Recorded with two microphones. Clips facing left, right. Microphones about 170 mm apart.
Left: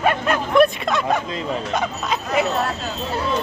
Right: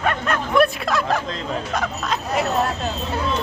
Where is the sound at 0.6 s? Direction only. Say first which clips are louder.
Left 2 dB; centre (ahead or behind).